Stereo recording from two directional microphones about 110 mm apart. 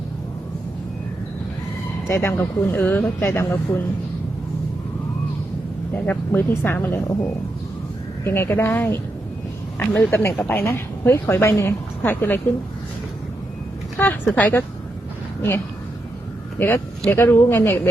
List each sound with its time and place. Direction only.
2.0 s speech: 20° left (ahead or behind)
5.9 s speech: 20° left (ahead or behind)
8.2 s speech: 20° left (ahead or behind)
14.0 s a sound: 15° left (ahead or behind)
14.3 s speech: 15° left (ahead or behind)